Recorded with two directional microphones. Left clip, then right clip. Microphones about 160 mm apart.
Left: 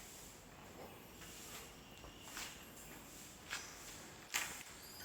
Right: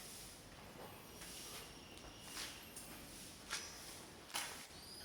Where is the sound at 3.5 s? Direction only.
20° left (ahead or behind).